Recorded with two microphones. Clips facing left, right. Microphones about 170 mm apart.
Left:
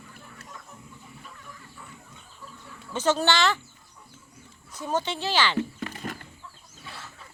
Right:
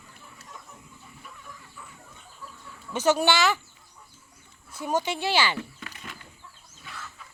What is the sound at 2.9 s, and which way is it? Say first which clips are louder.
Speech: right 1 dB; 10° right (ahead or behind).